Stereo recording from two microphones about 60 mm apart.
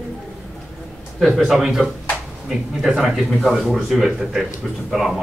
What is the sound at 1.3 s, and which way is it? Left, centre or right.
Speech, centre.